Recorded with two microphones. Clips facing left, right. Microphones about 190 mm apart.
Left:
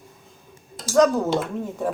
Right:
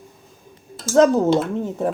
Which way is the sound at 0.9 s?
30° right (ahead or behind).